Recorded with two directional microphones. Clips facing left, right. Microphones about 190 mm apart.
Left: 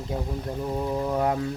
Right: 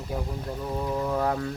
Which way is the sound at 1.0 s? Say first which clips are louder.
Left 2 dB; 20° left (ahead or behind).